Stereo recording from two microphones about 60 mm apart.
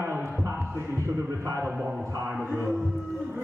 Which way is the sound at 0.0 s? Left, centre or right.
Right.